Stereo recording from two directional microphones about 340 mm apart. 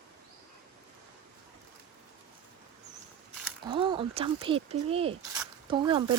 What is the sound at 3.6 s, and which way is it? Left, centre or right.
Speech, centre.